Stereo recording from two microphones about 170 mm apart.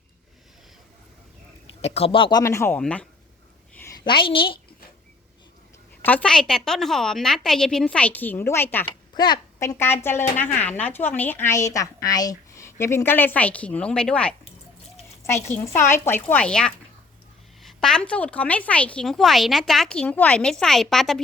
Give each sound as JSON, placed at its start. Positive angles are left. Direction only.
{"t": 1.8, "sound": "a woman's voice", "side_deg": 35}
{"t": 2.4, "sound": "a woman's voice", "side_deg": 15}
{"t": 4.0, "sound": "a woman's voice", "side_deg": 30}
{"t": 6.0, "sound": "a woman's voice", "side_deg": 10}
{"t": 9.1, "sound": "a woman's voice", "side_deg": 25}
{"t": 15.4, "sound": "a woman's voice", "side_deg": 15}